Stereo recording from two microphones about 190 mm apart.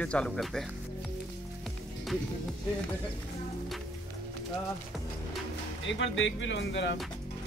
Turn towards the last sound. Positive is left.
turn(degrees=65)  # may be behind; listen again after turning